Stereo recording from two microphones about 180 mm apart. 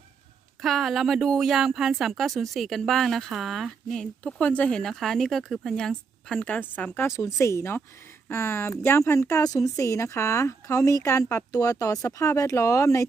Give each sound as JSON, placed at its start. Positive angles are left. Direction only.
{"t": 0.6, "sound": "speech", "side_deg": 0}